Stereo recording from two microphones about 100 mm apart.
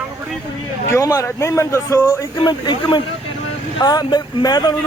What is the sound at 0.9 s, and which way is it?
Speech, 30° left (ahead or behind).